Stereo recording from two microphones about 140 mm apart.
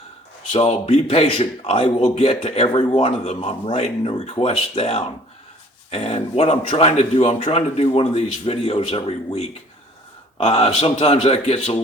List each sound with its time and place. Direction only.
0.5 s a man's voice: 45° left (ahead or behind)